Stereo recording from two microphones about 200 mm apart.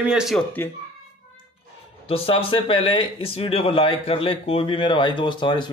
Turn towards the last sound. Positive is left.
turn(degrees=25)  # may be behind; listen again after turning